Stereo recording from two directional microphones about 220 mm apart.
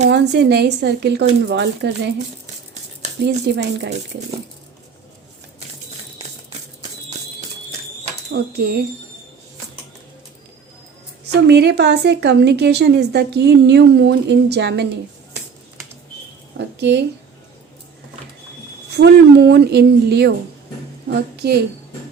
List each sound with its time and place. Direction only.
0.1 s a woman's voice: 50° right (ahead or behind)
3.2 s a woman's voice: 50° right (ahead or behind)
8.3 s a woman's voice: 45° right (ahead or behind)
11.4 s a woman's voice: 50° right (ahead or behind)
16.6 s speech: 50° right (ahead or behind)
18.9 s a woman's voice: 50° right (ahead or behind)